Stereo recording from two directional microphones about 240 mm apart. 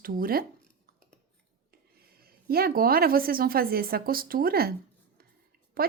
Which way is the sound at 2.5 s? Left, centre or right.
Right.